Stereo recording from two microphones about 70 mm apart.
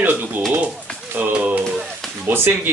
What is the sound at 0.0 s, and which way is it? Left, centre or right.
Pigeon, right.